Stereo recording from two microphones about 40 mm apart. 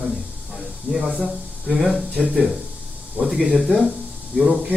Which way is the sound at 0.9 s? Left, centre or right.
Right.